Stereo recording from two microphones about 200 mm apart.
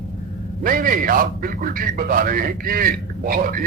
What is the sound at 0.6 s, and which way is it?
A man's voice, 45° right (ahead or behind).